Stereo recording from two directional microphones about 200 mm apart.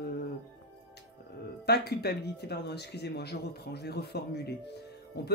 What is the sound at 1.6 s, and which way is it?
Speech, 55° left (ahead or behind).